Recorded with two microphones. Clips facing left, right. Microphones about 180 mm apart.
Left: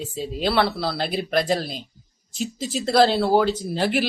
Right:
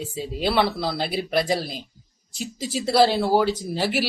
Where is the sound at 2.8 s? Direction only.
10° right (ahead or behind).